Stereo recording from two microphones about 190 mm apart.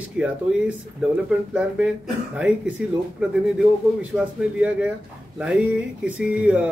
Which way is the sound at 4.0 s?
5° right (ahead or behind).